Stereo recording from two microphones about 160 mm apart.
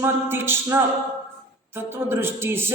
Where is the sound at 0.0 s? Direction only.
15° right (ahead or behind).